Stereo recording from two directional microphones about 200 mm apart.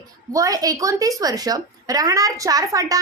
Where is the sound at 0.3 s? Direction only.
15° right (ahead or behind).